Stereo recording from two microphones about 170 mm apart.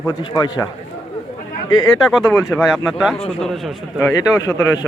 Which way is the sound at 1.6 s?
25° left (ahead or behind).